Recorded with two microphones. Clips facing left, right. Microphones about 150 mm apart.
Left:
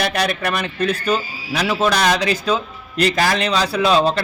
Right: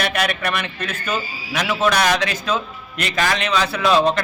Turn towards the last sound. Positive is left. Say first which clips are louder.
# left 1 dB
turn(degrees=35)  # may be behind; listen again after turning